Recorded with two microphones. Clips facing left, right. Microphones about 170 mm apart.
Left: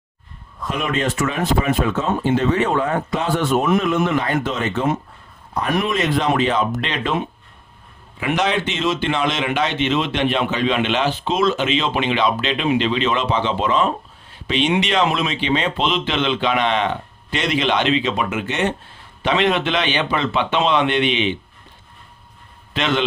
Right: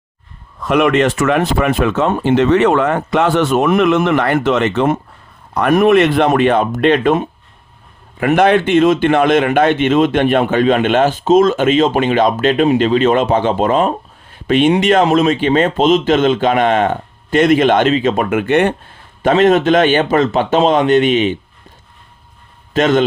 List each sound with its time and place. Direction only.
0.6 s speech: 75° right (ahead or behind)
5.7 s a man's voice: 60° right (ahead or behind)
19.2 s a man's voice: 45° right (ahead or behind)
22.7 s a man's voice: 45° right (ahead or behind)